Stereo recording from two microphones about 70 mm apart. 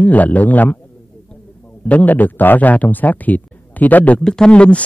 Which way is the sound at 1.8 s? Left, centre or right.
Left.